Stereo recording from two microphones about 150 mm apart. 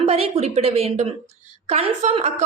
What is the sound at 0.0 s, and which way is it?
A woman's voice, 45° right (ahead or behind).